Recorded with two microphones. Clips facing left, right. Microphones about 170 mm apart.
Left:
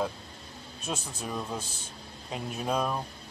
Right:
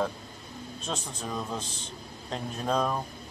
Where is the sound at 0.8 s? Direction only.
10° left (ahead or behind).